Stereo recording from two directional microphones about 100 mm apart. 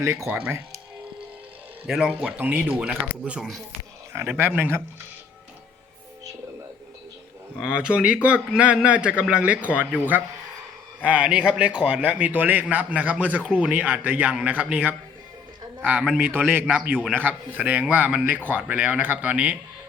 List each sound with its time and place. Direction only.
0.0 s speech: 30° right (ahead or behind)
0.3 s a man's voice: 15° right (ahead or behind)
1.9 s speech: centre (ahead or behind)
2.1 s a man's voice: 15° right (ahead or behind)
4.4 s speech: 20° right (ahead or behind)
7.6 s a man's voice: 10° right (ahead or behind)
17.2 s a man's voice: 20° right (ahead or behind)